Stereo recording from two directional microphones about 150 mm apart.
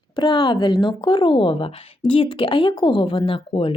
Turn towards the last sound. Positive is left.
turn(degrees=35)  # may be behind; listen again after turning